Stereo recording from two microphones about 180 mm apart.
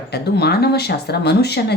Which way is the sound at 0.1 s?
65° left (ahead or behind).